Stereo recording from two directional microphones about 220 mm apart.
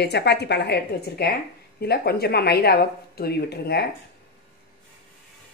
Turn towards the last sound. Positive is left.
turn(degrees=45)  # may be behind; listen again after turning